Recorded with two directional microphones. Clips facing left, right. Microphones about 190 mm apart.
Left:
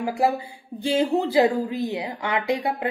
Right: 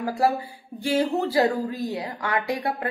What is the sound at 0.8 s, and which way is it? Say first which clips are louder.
A woman's voice: left 1 dB; 20° left (ahead or behind).